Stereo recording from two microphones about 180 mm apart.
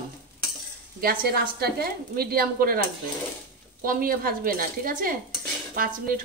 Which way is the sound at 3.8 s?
50° right (ahead or behind).